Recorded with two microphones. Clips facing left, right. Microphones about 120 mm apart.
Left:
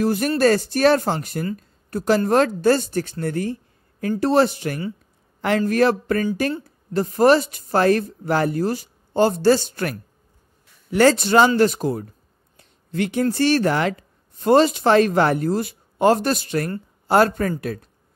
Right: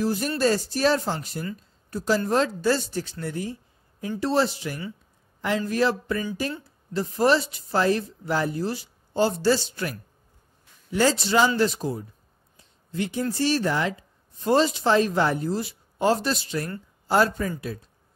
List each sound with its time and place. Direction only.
0.0 s a woman's voice: 60° left (ahead or behind)